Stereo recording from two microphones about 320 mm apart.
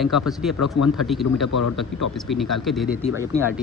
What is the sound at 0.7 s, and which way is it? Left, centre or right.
Speech, left.